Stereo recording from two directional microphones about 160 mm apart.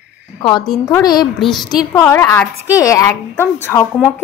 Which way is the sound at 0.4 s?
30° left (ahead or behind).